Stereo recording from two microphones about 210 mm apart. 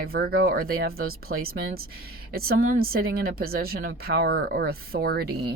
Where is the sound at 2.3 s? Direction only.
45° right (ahead or behind).